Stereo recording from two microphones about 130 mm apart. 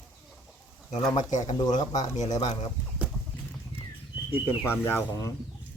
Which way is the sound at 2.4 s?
55° left (ahead or behind).